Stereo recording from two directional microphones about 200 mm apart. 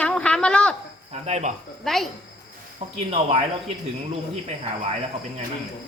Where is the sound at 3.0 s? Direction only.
30° right (ahead or behind).